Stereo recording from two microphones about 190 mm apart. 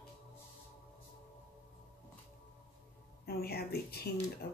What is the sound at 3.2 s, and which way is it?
Speech, 55° left (ahead or behind).